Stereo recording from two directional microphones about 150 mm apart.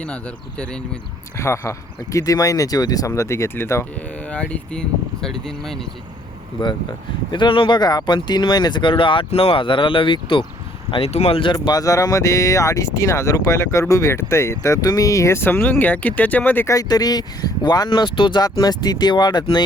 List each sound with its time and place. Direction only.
0.0 s speech: 5° left (ahead or behind)
1.4 s speech: 20° left (ahead or behind); by 5.9 s 5° left (ahead or behind)
6.6 s speech: 30° left (ahead or behind)
11.5 s speech: 25° left (ahead or behind)
16.7 s speech: 25° left (ahead or behind)